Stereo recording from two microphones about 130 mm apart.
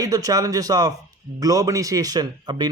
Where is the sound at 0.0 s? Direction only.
25° right (ahead or behind).